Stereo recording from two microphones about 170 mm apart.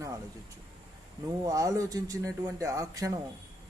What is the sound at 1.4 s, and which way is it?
Speech, 20° right (ahead or behind).